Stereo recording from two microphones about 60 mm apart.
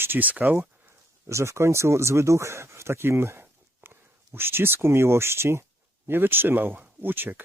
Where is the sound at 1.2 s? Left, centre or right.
Right.